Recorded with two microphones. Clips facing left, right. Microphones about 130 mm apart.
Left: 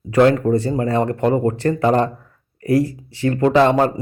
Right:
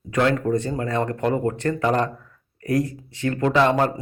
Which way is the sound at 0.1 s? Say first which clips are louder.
Left 6 dB; 35° left (ahead or behind).